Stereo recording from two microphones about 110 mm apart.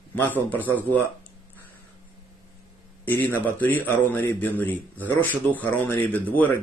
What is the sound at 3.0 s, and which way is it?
Speech, 15° left (ahead or behind).